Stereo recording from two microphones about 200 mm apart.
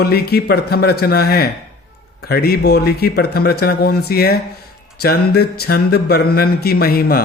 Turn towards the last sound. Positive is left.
turn(degrees=50)  # may be behind; listen again after turning